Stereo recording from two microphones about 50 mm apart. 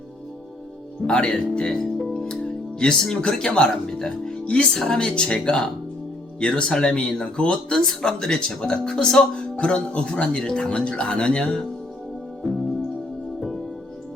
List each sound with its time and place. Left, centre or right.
1.0 s speech: centre